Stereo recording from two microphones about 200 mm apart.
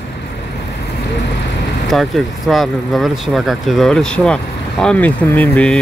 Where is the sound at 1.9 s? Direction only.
Centre (ahead or behind).